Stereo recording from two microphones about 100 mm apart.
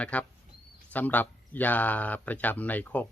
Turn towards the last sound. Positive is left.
turn(degrees=15)  # may be behind; listen again after turning